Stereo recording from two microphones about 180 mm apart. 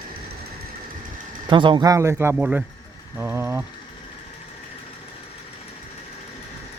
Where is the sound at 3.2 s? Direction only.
15° right (ahead or behind).